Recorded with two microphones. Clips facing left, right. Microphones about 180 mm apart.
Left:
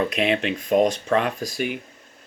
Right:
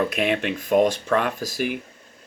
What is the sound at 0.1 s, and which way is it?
Speech, centre (ahead or behind).